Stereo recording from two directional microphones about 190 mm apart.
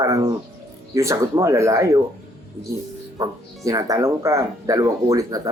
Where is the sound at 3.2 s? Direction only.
20° right (ahead or behind).